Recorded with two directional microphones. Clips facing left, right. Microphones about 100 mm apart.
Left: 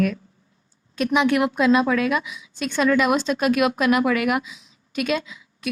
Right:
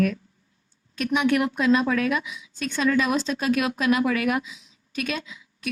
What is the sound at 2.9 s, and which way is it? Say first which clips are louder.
Speech: left 3 dB; 60° left (ahead or behind).